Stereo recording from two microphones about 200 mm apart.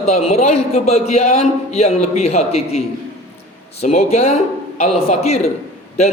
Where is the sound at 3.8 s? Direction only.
35° left (ahead or behind).